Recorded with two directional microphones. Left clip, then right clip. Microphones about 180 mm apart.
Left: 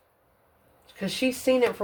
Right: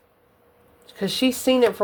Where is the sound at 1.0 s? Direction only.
35° right (ahead or behind).